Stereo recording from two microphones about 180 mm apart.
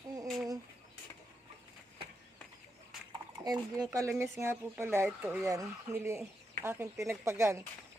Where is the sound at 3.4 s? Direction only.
20° right (ahead or behind).